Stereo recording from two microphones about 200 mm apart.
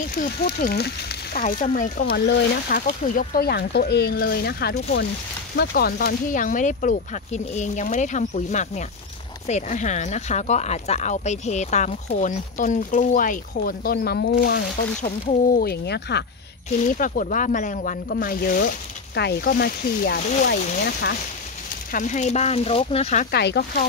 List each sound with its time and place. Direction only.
0.2 s speech: 50° left (ahead or behind)
2.1 s speech: 55° left (ahead or behind)
16.9 s speech: 40° left (ahead or behind)
21.9 s speech: 40° left (ahead or behind)
23.3 s speech: 55° left (ahead or behind)